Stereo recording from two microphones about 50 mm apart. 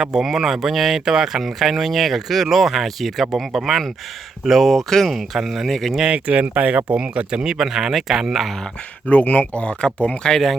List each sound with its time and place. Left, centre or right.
0.0 s speech: centre
5.6 s speech: centre
6.1 s speech: right; by 8.5 s centre
9.0 s speech: left
9.4 s speech: left
10.2 s speech: centre